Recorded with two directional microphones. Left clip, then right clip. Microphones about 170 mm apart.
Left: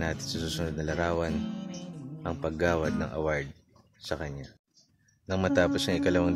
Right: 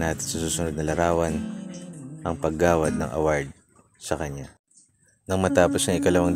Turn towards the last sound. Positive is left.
turn(degrees=-20)  # may be behind; listen again after turning